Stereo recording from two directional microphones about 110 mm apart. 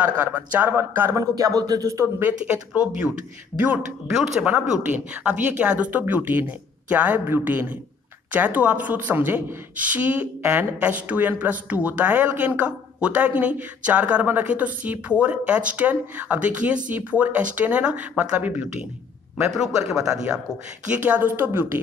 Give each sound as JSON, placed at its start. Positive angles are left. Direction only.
{"t": 0.0, "sound": "speech", "side_deg": -15}
{"t": 2.7, "sound": "speech", "side_deg": -10}
{"t": 19.5, "sound": "speech", "side_deg": -5}